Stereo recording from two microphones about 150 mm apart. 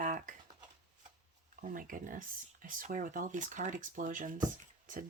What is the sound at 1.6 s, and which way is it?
Speech, 65° right (ahead or behind).